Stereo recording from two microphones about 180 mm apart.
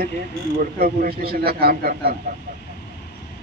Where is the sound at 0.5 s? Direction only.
55° right (ahead or behind).